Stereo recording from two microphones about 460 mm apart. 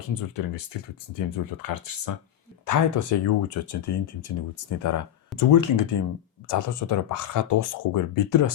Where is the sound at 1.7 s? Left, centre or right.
Left.